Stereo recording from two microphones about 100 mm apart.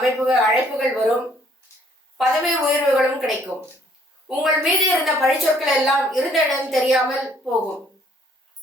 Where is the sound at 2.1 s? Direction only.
Centre (ahead or behind).